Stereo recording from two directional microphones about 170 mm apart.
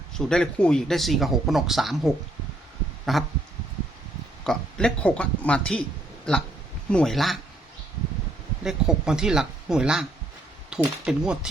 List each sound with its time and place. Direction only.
0.1 s speech: 5° left (ahead or behind)
4.4 s speech: 5° left (ahead or behind)
8.6 s speech: 5° right (ahead or behind)